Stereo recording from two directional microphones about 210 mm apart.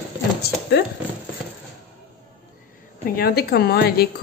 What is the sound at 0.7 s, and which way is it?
Speech, 50° left (ahead or behind).